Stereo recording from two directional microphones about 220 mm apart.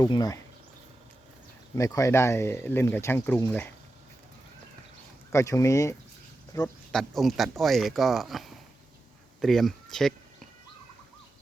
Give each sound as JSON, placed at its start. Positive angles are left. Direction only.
{"t": 0.0, "sound": "speech", "side_deg": 15}
{"t": 1.7, "sound": "speech", "side_deg": 15}
{"t": 5.3, "sound": "speech", "side_deg": 15}
{"t": 6.9, "sound": "speech", "side_deg": 0}